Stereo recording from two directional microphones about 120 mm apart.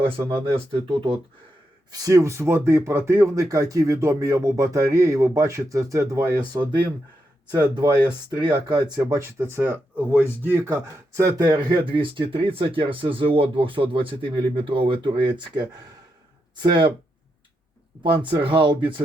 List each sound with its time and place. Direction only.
0.3 s speech: 50° right (ahead or behind)
1.9 s speech: 30° right (ahead or behind)
8.3 s speech: 40° right (ahead or behind); by 10.8 s 15° right (ahead or behind)
11.2 s speech: 30° right (ahead or behind)
11.7 s speech: 45° right (ahead or behind)
16.6 s speech: 40° right (ahead or behind)
18.3 s speech: 45° right (ahead or behind)